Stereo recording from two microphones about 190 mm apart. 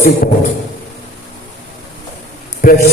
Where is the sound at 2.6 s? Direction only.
45° left (ahead or behind).